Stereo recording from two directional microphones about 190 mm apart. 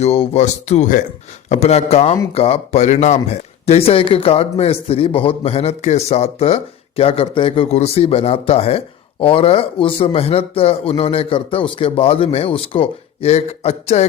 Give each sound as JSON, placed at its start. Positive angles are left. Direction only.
{"t": 0.0, "sound": "a man's voice", "side_deg": 30}